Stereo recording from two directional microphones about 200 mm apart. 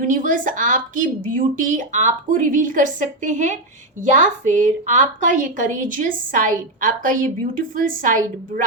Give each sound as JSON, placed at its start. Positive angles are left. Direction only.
{"t": 0.0, "sound": "a woman's voice", "side_deg": -40}